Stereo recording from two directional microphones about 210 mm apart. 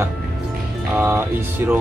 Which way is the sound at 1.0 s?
10° right (ahead or behind).